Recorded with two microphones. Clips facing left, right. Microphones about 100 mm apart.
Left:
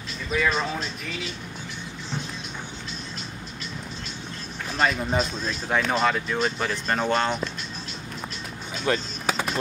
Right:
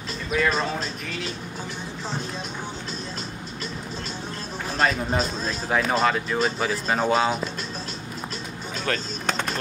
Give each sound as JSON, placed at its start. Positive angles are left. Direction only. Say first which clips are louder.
{"t": 0.3, "sound": "speech", "louder": "right 1 dB", "side_deg": 0}
{"t": 4.7, "sound": "speech", "louder": "even", "side_deg": 0}
{"t": 8.8, "sound": "music", "louder": "left 2 dB", "side_deg": 5}